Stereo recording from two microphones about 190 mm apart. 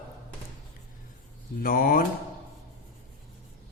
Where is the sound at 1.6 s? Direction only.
50° left (ahead or behind).